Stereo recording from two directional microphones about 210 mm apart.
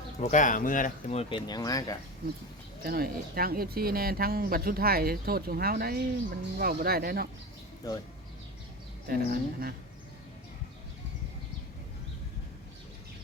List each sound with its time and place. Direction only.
0.2 s speech: 35° left (ahead or behind); by 2.0 s 15° left (ahead or behind)
2.8 s speech: 45° right (ahead or behind)
7.8 s speech: 15° left (ahead or behind)
9.0 s speech: 45° right (ahead or behind)